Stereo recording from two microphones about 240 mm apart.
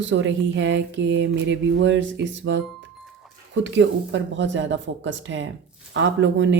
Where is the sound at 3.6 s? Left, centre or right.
Right.